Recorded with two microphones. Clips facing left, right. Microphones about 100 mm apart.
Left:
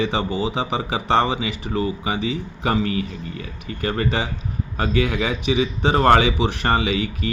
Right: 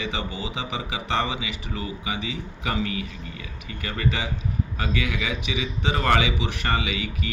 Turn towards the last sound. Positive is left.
turn(degrees=35)  # may be behind; listen again after turning